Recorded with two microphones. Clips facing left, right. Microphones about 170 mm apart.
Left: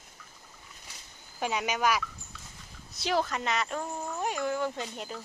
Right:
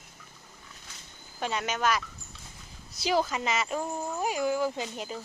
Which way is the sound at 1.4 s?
10° left (ahead or behind).